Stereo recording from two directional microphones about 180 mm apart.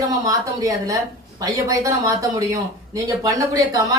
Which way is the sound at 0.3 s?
20° right (ahead or behind).